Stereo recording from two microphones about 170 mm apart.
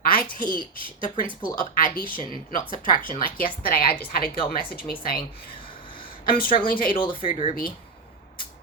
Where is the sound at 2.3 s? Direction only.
55° left (ahead or behind).